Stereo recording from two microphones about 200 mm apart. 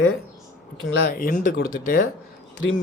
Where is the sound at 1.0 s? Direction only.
45° left (ahead or behind).